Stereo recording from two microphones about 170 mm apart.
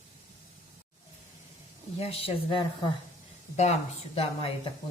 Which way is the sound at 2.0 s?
35° left (ahead or behind).